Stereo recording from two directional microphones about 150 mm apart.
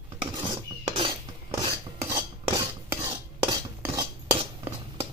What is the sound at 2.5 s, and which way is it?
Cutlery, 25° right (ahead or behind).